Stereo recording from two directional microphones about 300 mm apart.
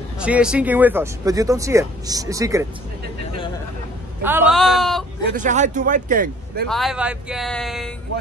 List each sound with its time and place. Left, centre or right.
0.2 s speech: centre
4.2 s speech: centre
5.2 s a man's voice: right
6.7 s speech: centre